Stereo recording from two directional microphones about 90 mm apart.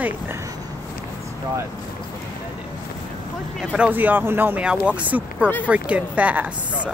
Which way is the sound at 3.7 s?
15° right (ahead or behind).